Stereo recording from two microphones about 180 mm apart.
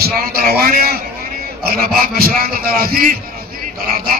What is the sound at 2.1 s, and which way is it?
Speech, 55° right (ahead or behind).